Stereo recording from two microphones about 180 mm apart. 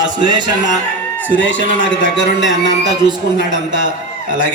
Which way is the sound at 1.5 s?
85° left.